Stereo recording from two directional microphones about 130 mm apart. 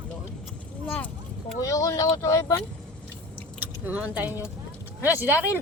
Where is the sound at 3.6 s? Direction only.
10° right (ahead or behind).